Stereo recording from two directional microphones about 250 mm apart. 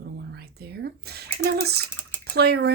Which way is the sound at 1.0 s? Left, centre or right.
Right.